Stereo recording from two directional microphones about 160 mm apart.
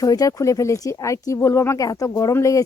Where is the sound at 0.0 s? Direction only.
20° left (ahead or behind).